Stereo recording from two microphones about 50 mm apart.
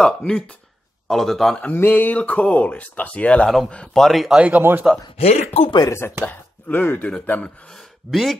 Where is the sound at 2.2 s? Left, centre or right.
Left.